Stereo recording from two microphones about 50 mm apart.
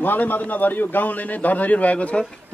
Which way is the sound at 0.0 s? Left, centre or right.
Left.